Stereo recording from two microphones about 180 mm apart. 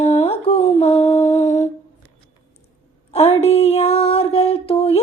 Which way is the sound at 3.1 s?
35° left (ahead or behind).